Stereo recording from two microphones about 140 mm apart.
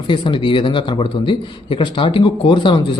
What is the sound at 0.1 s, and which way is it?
A man's voice, 35° left (ahead or behind).